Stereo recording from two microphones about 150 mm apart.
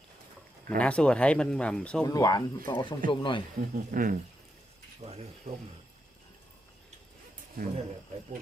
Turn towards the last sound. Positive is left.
turn(degrees=-75)  # may be behind; listen again after turning